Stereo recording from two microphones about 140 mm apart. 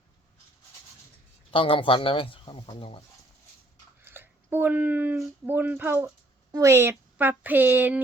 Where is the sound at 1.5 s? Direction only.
40° left (ahead or behind).